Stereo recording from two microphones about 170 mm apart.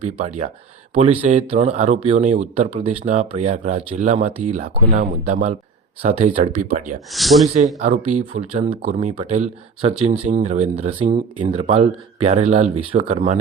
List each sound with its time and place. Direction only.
0.0 s speech: 45° right (ahead or behind)
7.1 s speech: centre (ahead or behind)
7.4 s speech: 40° right (ahead or behind)